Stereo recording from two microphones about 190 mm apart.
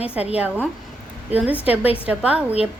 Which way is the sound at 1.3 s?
10° right (ahead or behind).